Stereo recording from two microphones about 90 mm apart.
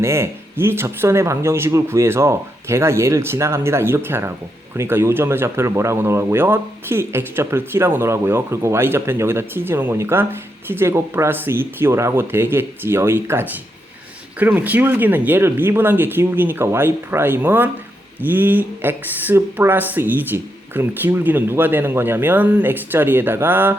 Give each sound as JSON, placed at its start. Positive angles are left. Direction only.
{"t": 0.0, "sound": "speech", "side_deg": -30}